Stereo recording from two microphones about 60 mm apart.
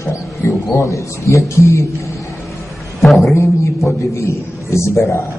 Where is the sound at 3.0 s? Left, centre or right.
Centre.